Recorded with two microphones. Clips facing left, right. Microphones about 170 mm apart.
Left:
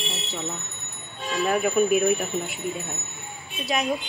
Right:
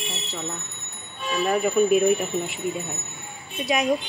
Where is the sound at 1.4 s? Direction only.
Centre (ahead or behind).